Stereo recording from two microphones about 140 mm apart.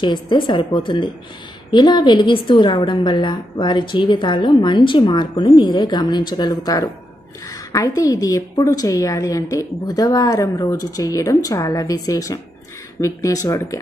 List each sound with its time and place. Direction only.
0.0 s a woman's voice: 35° left (ahead or behind)